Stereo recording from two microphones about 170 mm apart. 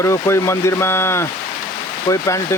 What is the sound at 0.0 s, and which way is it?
Speech, 15° left (ahead or behind).